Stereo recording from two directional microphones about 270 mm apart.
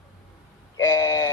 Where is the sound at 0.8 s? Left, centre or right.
Centre.